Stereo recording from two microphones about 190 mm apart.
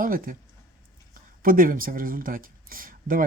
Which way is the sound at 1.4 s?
50° right (ahead or behind).